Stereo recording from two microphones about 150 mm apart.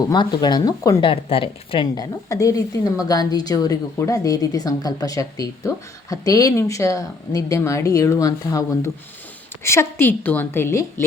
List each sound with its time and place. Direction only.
0.0 s a woman's voice: 25° left (ahead or behind)
1.1 s speech: 40° left (ahead or behind)
2.3 s a woman's voice: 20° left (ahead or behind)